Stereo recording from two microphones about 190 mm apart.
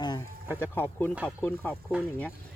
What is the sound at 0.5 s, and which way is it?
Speech, 10° left (ahead or behind).